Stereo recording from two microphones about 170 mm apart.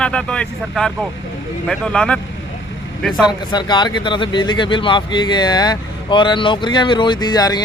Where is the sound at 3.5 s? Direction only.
25° left (ahead or behind).